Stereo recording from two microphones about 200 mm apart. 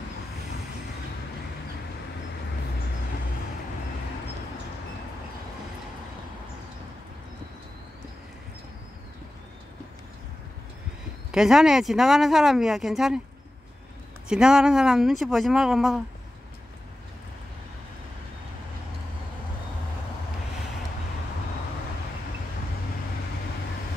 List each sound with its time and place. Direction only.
11.3 s speech: centre (ahead or behind)
14.3 s speech: 5° right (ahead or behind)